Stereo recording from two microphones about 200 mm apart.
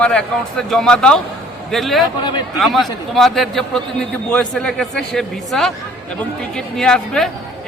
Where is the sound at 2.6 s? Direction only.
Centre (ahead or behind).